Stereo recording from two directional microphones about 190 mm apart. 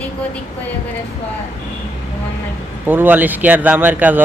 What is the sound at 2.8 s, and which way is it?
Speech, 10° right (ahead or behind).